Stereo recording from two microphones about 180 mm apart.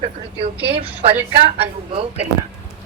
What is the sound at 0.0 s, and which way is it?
Speech, 30° right (ahead or behind).